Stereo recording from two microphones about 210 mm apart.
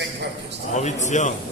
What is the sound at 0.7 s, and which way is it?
Speech, 35° left (ahead or behind).